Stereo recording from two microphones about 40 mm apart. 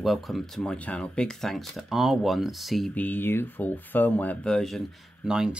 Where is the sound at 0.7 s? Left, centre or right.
Left.